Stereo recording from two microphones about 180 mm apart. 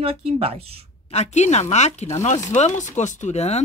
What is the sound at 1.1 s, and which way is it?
Speech, 40° left (ahead or behind).